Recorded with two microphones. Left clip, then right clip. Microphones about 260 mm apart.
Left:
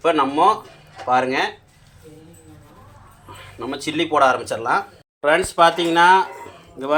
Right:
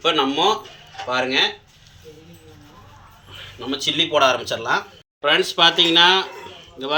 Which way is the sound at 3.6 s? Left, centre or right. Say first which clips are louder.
Right 3 dB; centre.